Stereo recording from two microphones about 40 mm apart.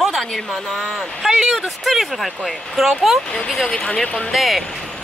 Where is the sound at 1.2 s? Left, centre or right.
Centre.